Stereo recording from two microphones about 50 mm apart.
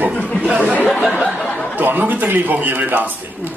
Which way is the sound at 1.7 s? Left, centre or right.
Right.